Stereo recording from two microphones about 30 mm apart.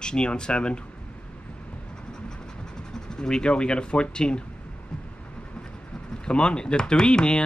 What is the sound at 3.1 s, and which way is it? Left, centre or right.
Speech, left.